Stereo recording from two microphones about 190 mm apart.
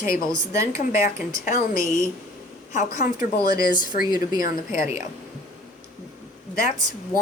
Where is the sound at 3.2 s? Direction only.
20° right (ahead or behind).